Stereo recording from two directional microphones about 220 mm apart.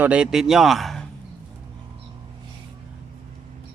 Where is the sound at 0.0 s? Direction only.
5° right (ahead or behind).